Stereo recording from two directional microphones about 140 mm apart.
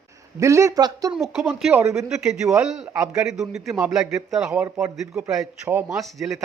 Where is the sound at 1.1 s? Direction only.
Centre (ahead or behind).